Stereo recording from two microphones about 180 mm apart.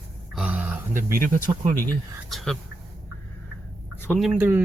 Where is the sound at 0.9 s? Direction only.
50° right (ahead or behind).